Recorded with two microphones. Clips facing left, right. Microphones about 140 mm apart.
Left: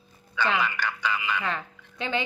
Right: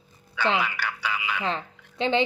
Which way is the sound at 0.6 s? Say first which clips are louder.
Left 1 dB; 10° right (ahead or behind).